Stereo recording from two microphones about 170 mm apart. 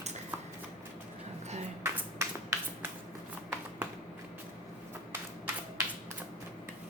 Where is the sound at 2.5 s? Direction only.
20° right (ahead or behind).